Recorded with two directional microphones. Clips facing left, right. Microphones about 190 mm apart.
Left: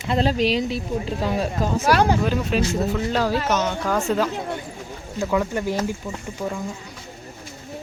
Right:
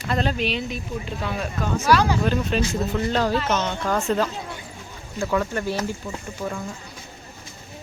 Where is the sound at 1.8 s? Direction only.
50° left (ahead or behind).